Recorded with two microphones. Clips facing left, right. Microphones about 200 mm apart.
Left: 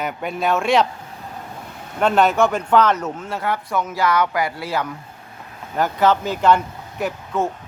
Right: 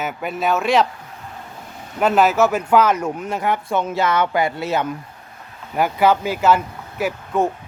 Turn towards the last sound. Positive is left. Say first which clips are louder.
# right 2 dB
turn(degrees=-10)  # may be behind; listen again after turning